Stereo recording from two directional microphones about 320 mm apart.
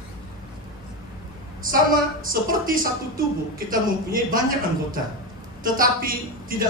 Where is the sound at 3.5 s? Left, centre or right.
Right.